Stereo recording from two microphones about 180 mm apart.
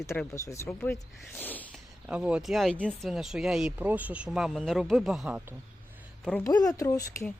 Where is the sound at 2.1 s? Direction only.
5° right (ahead or behind).